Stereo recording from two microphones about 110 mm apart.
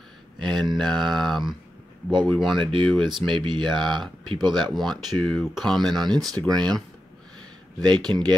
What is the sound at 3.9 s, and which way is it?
Speech, 45° right (ahead or behind).